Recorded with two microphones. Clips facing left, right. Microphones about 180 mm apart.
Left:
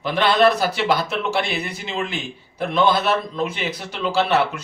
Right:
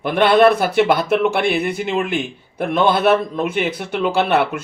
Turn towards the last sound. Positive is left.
turn(degrees=-55)  # may be behind; listen again after turning